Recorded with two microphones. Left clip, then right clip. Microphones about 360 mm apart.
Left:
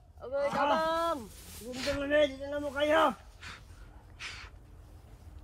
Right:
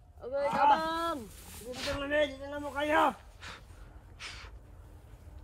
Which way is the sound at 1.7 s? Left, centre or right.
Centre.